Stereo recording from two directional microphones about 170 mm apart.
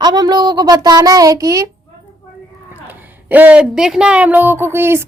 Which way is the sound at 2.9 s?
10° right (ahead or behind).